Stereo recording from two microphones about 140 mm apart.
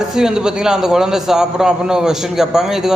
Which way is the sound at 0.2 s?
5° right (ahead or behind).